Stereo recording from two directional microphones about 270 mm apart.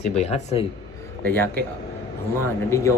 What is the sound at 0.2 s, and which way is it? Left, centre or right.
Speech, left.